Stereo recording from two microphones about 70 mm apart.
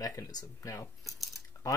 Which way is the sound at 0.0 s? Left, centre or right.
Left.